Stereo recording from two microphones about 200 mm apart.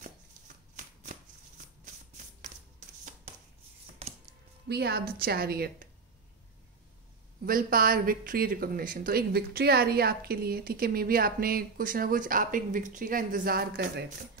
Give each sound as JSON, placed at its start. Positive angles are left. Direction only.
{"t": 4.0, "sound": "music", "side_deg": -30}
{"t": 4.6, "sound": "speech", "side_deg": -55}
{"t": 7.4, "sound": "speech", "side_deg": -45}